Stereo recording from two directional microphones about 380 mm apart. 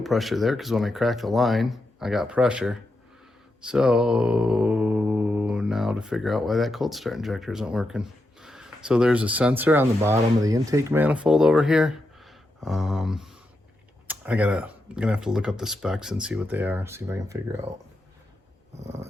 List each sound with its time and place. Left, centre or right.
0.0 s speech: centre
3.6 s mantra: centre
14.1 s speech: centre
18.8 s a sound: centre